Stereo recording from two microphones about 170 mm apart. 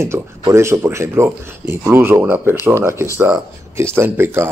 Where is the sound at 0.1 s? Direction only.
15° right (ahead or behind).